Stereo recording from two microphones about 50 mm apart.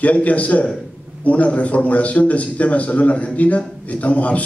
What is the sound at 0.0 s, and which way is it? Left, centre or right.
A man's voice, left.